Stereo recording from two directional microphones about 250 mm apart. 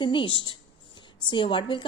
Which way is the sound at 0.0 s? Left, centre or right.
Centre.